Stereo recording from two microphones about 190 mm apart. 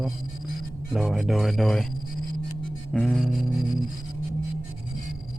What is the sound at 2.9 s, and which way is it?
Speech, centre (ahead or behind).